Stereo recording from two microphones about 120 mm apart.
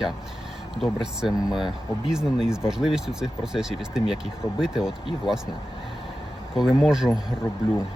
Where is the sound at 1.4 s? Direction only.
40° left (ahead or behind).